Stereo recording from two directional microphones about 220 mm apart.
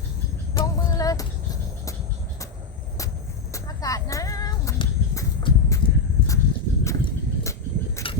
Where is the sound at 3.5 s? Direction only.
15° left (ahead or behind).